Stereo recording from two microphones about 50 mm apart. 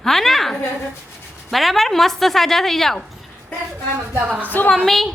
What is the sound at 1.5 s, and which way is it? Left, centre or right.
A woman's voice, centre.